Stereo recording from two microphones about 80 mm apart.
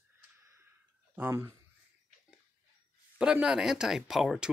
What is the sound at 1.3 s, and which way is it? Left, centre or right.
Speech, right.